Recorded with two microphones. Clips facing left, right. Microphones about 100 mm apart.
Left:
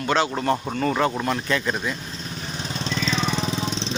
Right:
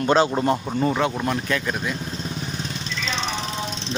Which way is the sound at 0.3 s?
15° right (ahead or behind).